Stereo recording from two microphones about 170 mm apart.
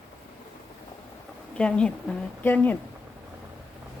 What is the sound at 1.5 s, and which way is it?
A woman's voice, 5° left (ahead or behind).